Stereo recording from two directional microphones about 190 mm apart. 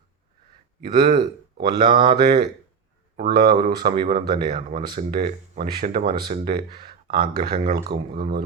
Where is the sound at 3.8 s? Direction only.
25° right (ahead or behind).